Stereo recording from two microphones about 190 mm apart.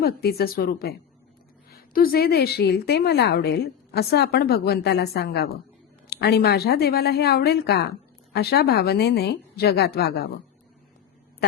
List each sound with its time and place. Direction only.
0.0 s a woman's voice: 55° left (ahead or behind)